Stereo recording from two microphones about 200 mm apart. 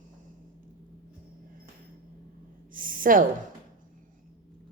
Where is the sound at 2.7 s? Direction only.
45° right (ahead or behind).